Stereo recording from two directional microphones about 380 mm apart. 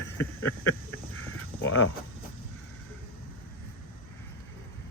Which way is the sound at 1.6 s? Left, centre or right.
Left.